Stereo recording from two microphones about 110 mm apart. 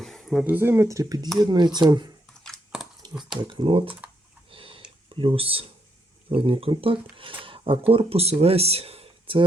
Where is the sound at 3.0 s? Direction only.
40° right (ahead or behind).